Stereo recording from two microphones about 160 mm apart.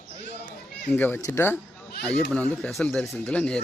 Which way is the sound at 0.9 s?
10° left (ahead or behind).